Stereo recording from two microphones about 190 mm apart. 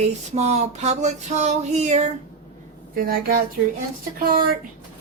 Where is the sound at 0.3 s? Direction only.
35° right (ahead or behind).